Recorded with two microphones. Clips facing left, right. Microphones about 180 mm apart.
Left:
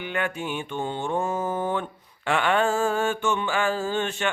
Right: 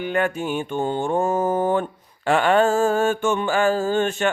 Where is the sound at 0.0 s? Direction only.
40° right (ahead or behind).